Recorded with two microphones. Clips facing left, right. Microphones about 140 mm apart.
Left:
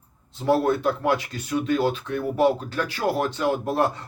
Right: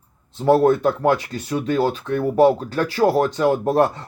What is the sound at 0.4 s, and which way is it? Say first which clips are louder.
Speech: right 5 dB; 40° right (ahead or behind).